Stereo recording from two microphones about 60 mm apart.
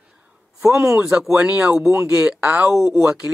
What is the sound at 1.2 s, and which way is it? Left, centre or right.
Speech, centre.